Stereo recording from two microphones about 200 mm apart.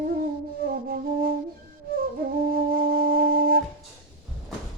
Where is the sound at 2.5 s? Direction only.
45° right (ahead or behind).